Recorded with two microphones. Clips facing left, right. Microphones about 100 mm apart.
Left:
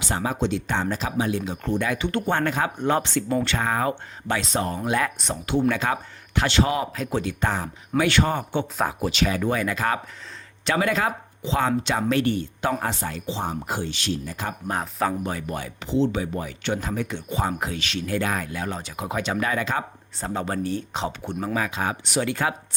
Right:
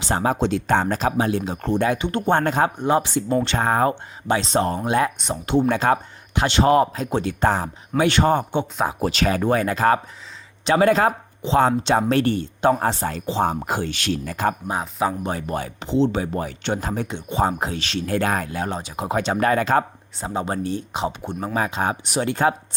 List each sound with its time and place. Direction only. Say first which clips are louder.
0.1 s speech: right 4 dB; 40° right (ahead or behind)
2.0 s speech: right 2 dB; 20° right (ahead or behind)
2.3 s speech: right 7 dB; 35° right (ahead or behind)
2.8 s speech: right 3 dB; 15° right (ahead or behind)
3.6 s speech: right 5 dB; 40° right (ahead or behind)
4.3 s speech: right 5 dB; 25° right (ahead or behind)
6.3 s speech: right 5 dB; 20° right (ahead or behind); by 14.5 s 55° right (ahead or behind)
14.7 s speech: right 2 dB; 10° right (ahead or behind)
15.3 s speech: right 4 dB; 35° right (ahead or behind)
15.8 s speech: right 2 dB; 25° right (ahead or behind)
16.2 s speech: right 3 dB; 45° right (ahead or behind)
17.1 s speech: right 5 dB; 25° right (ahead or behind); by 19.8 s 45° right (ahead or behind)
20.2 s speech: right 2 dB; 20° right (ahead or behind)
21.5 s speech: right 4 dB; 35° right (ahead or behind)